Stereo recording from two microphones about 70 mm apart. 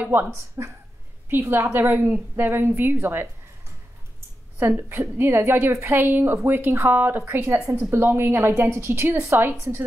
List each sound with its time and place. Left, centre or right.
0.0 s a woman's voice: right
0.3 s a woman's voice: right
1.3 s a woman's voice: right
4.6 s a woman's voice: right